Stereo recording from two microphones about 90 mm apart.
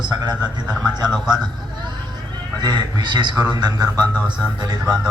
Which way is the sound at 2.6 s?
50° right (ahead or behind).